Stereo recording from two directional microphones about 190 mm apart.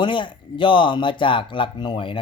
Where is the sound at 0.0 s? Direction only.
25° left (ahead or behind).